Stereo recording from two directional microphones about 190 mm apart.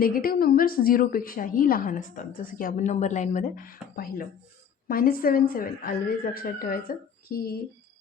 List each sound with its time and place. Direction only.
0.0 s a woman's voice: 50° left (ahead or behind)